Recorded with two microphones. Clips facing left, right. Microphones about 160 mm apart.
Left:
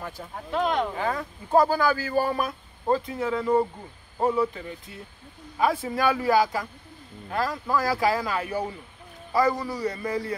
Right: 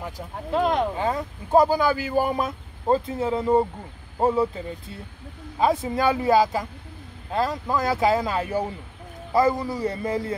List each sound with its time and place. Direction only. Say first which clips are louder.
0.5 s speech: right 3 dB; 35° right (ahead or behind)
0.7 s speech: right 3 dB; 20° right (ahead or behind)